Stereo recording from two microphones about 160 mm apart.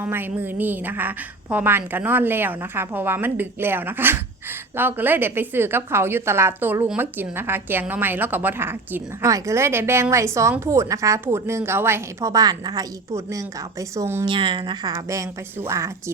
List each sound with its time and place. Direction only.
0.0 s a woman's voice: 10° right (ahead or behind)
14.3 s speech: 30° right (ahead or behind)